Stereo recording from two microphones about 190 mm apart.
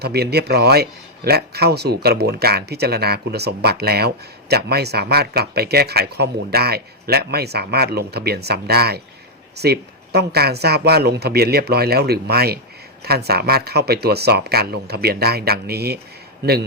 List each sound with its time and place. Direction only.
0.0 s speech: 60° right (ahead or behind)